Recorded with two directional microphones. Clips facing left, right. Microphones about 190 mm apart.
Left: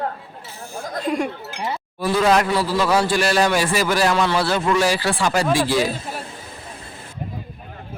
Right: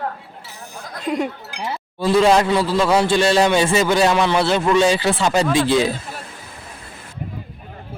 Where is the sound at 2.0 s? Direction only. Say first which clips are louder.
Right 3 dB; 25° right (ahead or behind).